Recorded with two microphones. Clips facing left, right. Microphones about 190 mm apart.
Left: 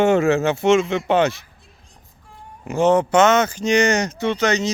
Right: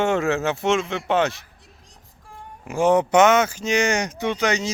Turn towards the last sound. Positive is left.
turn(degrees=-10)  # may be behind; listen again after turning